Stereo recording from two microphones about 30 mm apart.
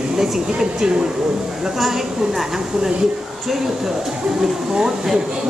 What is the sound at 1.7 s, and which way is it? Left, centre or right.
Speech, centre.